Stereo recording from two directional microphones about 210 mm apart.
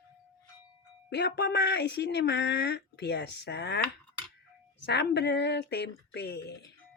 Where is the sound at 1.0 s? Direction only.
55° left (ahead or behind).